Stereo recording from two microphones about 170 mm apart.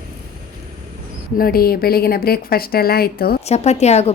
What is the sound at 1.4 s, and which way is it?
A woman's voice, 60° left (ahead or behind).